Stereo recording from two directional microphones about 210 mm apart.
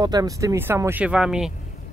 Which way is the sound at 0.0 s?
20° right (ahead or behind).